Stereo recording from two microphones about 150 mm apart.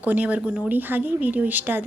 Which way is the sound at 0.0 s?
10° right (ahead or behind).